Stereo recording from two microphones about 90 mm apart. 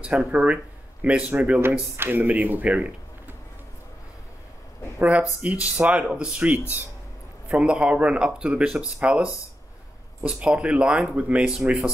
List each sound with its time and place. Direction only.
0.0 s speech: 5° right (ahead or behind)
4.9 s speech: 15° right (ahead or behind)